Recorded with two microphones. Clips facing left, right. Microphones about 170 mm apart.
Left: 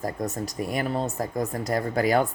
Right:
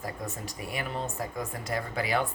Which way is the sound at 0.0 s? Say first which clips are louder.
Left 8 dB; 40° left (ahead or behind).